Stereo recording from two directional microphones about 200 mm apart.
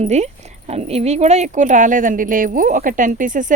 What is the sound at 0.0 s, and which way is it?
A woman's voice, 35° right (ahead or behind).